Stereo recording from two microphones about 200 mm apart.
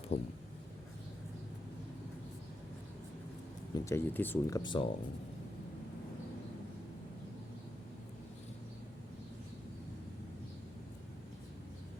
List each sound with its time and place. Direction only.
0.1 s speech: 60° left (ahead or behind)
3.8 s speech: 15° left (ahead or behind)